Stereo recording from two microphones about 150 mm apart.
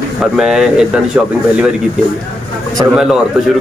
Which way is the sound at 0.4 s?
5° right (ahead or behind).